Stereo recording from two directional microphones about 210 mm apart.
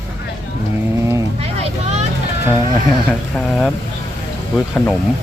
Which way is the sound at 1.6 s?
30° right (ahead or behind).